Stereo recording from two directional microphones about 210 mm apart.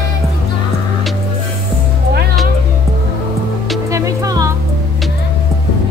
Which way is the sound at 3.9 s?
15° right (ahead or behind).